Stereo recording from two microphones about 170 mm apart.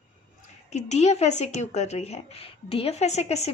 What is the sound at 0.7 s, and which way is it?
Speech, 40° left (ahead or behind).